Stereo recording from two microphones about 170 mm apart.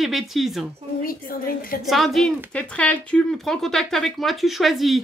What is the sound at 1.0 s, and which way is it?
Speech, 60° left (ahead or behind).